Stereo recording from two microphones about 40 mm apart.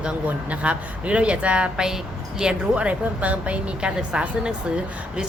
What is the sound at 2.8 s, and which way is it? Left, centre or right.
A woman's voice, right.